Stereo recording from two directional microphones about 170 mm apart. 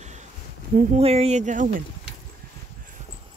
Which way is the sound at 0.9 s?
35° right (ahead or behind).